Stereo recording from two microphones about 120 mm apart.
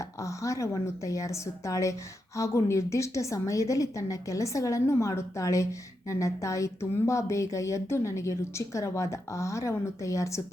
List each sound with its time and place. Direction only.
0.0 s a woman's voice: 25° left (ahead or behind)